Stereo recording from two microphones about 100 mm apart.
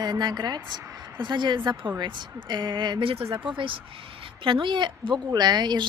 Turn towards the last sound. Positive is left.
turn(degrees=-45)  # may be behind; listen again after turning